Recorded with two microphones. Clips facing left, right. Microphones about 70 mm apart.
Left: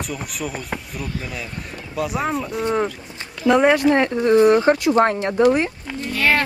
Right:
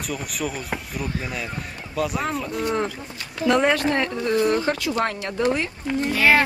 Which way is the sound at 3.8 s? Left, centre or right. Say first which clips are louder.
Left 6 dB; left.